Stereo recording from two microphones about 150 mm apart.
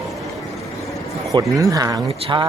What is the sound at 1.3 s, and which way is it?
Speech, 25° right (ahead or behind).